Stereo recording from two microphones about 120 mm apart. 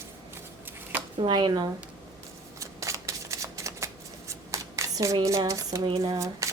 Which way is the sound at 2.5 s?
25° right (ahead or behind).